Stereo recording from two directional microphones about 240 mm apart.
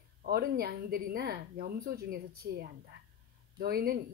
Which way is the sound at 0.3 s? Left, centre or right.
Right.